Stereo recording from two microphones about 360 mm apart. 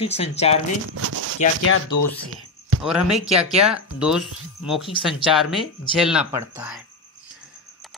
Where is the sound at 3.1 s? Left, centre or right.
Centre.